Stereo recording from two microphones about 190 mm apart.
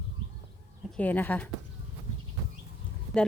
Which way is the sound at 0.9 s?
10° left (ahead or behind).